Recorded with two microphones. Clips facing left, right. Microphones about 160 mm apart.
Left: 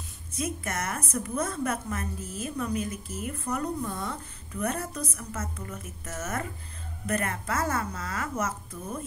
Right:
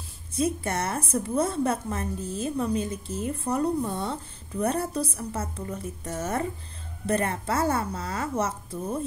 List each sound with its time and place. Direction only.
0.3 s a woman's voice: 30° right (ahead or behind)